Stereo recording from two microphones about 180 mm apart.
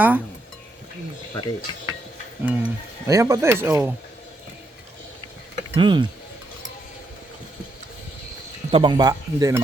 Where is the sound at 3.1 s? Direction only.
20° right (ahead or behind).